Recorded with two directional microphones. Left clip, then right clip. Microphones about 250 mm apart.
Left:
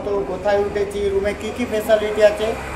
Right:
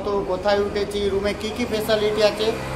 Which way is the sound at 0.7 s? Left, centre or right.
Centre.